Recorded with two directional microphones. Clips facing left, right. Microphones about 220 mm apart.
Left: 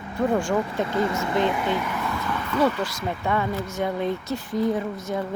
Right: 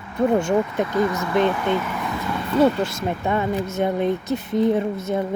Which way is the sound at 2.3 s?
25° right (ahead or behind).